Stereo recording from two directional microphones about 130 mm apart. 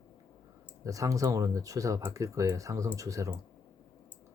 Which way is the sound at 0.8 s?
25° right (ahead or behind).